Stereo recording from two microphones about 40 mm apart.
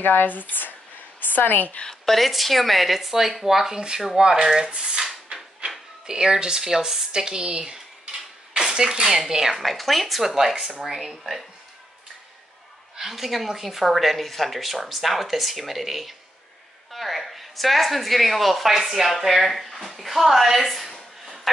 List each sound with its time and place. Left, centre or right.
0.0 s speech: left
1.9 s speech: centre
4.2 s a sound: centre
6.0 s speech: centre
7.1 s a sound: centre
9.3 s speech: centre
9.6 s speech: centre
12.9 s a woman's voice: centre